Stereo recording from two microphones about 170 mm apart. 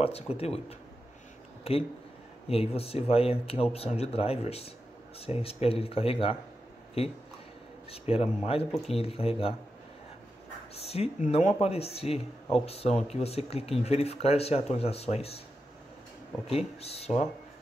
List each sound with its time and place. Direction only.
0.0 s speech: 35° left (ahead or behind)
10.7 s speech: 35° left (ahead or behind)
16.4 s speech: 35° left (ahead or behind)